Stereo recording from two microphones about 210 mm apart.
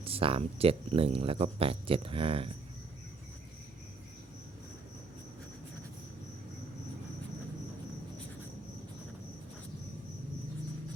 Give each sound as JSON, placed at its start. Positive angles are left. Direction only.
{"t": 0.0, "sound": "speech", "side_deg": -25}